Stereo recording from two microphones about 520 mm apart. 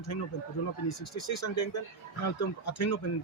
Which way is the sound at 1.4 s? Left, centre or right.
Left.